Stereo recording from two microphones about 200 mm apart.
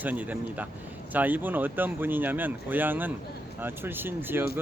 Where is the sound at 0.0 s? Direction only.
10° right (ahead or behind).